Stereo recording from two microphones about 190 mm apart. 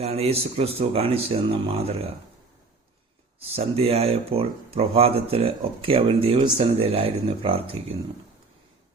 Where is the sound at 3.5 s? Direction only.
30° right (ahead or behind).